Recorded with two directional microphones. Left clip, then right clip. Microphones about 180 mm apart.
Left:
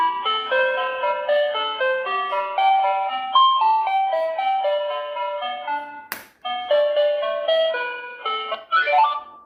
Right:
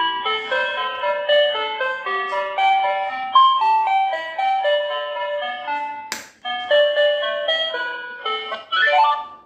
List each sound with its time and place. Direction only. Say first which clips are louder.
0.0 s music: even; 20° left (ahead or behind)